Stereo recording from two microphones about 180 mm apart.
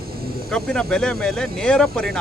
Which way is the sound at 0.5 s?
5° left (ahead or behind).